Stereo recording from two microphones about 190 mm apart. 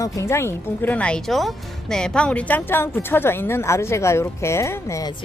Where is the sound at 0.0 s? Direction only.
15° left (ahead or behind).